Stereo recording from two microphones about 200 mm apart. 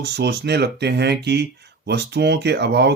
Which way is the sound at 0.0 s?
55° right (ahead or behind).